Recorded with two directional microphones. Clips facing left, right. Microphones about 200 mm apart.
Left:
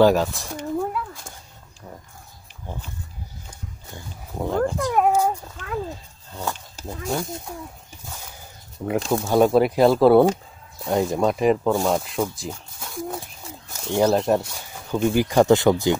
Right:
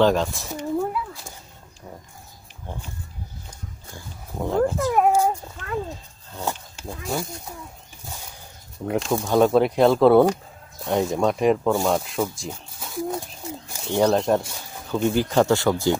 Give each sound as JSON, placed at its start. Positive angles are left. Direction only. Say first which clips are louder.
{"t": 0.0, "sound": "a sound", "louder": "left 2 dB", "side_deg": 5}
{"t": 4.4, "sound": "a sound", "louder": "right 1 dB", "side_deg": 0}
{"t": 6.9, "sound": "speech", "louder": "left 2 dB", "side_deg": 0}
{"t": 8.8, "sound": "speech", "louder": "left 1 dB", "side_deg": 0}
{"t": 13.7, "sound": "bird", "louder": "left 4 dB", "side_deg": -10}
{"t": 13.9, "sound": "speech", "louder": "even", "side_deg": 5}